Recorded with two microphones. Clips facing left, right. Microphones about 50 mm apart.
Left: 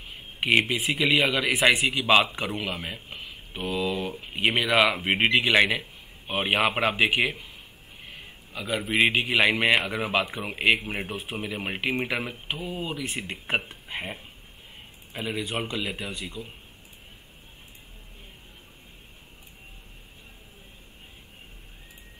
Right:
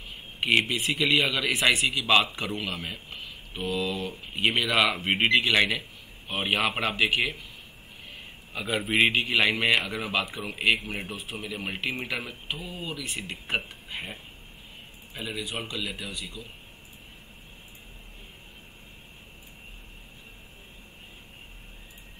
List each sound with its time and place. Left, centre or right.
0.4 s a man's voice: centre
8.5 s a man's voice: centre
9.1 s a man's voice: centre; by 14.0 s left
15.2 s speech: left